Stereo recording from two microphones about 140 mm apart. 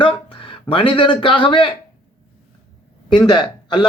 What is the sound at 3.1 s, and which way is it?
Speech, 30° left (ahead or behind).